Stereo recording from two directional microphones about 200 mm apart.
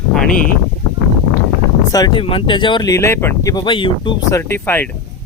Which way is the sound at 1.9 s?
20° left (ahead or behind).